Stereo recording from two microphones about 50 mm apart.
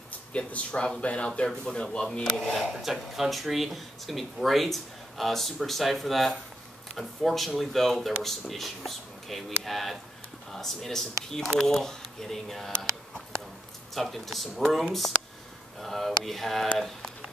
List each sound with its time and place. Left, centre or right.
0.3 s speech: left
2.5 s speech: centre
13.9 s speech: centre